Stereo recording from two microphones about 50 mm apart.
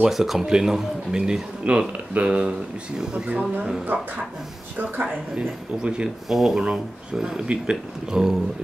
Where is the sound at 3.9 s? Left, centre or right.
Right.